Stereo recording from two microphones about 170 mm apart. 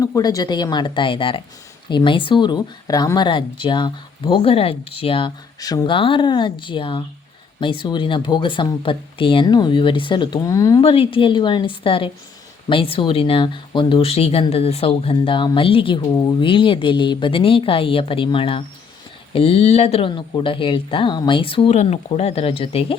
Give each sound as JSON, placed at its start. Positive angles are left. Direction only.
{"t": 0.0, "sound": "speech", "side_deg": 20}
{"t": 10.8, "sound": "speech", "side_deg": 35}